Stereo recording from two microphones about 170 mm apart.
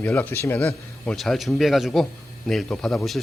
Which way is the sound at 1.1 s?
Centre (ahead or behind).